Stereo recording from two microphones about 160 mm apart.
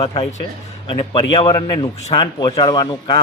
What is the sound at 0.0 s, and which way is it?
Speech, 40° left (ahead or behind).